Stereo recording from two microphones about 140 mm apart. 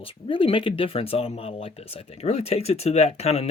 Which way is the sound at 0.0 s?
40° left (ahead or behind).